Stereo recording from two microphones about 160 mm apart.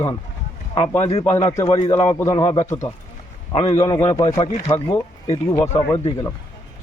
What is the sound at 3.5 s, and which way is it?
Speech, 40° left (ahead or behind).